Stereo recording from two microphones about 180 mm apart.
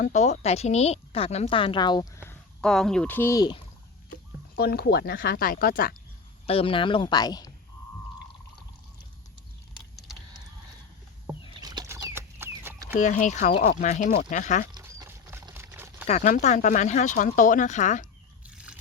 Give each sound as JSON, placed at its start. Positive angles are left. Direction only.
{"t": 0.0, "sound": "speech", "side_deg": 40}
{"t": 2.6, "sound": "speech", "side_deg": 5}
{"t": 4.1, "sound": "speech", "side_deg": 60}
{"t": 6.4, "sound": "speech", "side_deg": 35}
{"t": 11.6, "sound": "chicken", "side_deg": -20}
{"t": 12.9, "sound": "speech", "side_deg": 45}
{"t": 14.8, "sound": "a sound", "side_deg": -15}
{"t": 16.0, "sound": "speech", "side_deg": 45}
{"t": 18.4, "sound": "a sound", "side_deg": -5}